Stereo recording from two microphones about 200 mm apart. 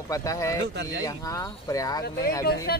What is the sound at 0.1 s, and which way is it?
Speech, 15° left (ahead or behind).